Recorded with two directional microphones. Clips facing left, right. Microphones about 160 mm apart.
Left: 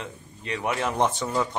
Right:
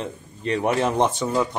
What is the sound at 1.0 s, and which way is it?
Speech, 15° right (ahead or behind).